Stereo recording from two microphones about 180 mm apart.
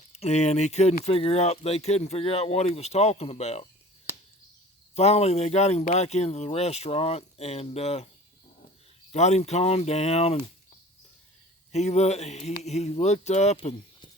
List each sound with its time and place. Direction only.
0.1 s speech: 35° left (ahead or behind)
4.1 s a sound: 10° right (ahead or behind)
4.9 s speech: 35° left (ahead or behind)
9.1 s speech: 40° left (ahead or behind)
11.7 s speech: 40° left (ahead or behind)